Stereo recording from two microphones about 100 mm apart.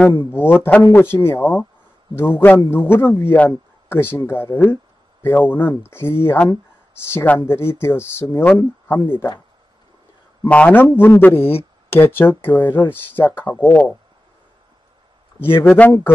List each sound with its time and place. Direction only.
0.2 s speech: 20° left (ahead or behind)
10.5 s speech: 15° left (ahead or behind)
15.4 s speech: 20° left (ahead or behind)